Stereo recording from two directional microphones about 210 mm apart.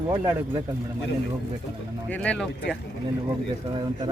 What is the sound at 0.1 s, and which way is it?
Speech, 15° right (ahead or behind).